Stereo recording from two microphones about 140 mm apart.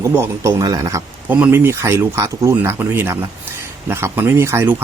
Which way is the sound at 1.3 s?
10° right (ahead or behind).